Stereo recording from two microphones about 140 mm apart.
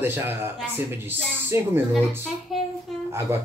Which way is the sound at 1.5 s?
20° right (ahead or behind).